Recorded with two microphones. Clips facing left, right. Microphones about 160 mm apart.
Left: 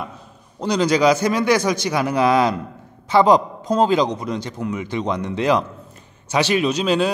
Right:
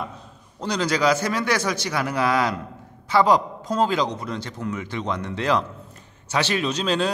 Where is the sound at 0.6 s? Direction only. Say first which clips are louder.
Left 6 dB; 15° left (ahead or behind).